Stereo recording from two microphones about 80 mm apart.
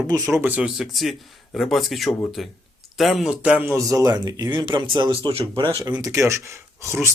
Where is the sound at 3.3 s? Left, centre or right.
Centre.